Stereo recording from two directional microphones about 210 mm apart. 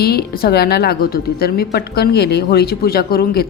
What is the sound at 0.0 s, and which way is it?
Speech, 50° left (ahead or behind).